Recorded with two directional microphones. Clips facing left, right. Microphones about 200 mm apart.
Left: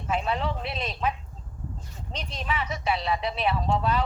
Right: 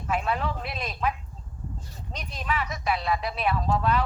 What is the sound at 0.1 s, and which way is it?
Speech, 25° left (ahead or behind).